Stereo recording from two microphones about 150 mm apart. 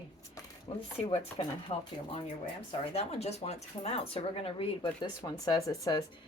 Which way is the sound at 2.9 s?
45° left (ahead or behind).